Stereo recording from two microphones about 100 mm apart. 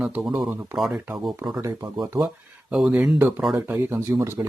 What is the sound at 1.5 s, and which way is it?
Speech, 40° right (ahead or behind).